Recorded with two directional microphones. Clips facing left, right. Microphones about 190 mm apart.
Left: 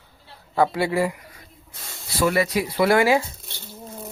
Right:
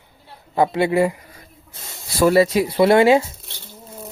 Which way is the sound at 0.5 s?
20° right (ahead or behind).